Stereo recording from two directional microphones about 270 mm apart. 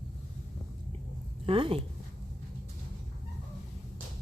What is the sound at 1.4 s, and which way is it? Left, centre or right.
Speech, centre.